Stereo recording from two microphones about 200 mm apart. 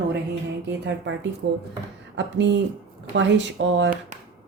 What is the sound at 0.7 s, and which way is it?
Speech, 65° right (ahead or behind).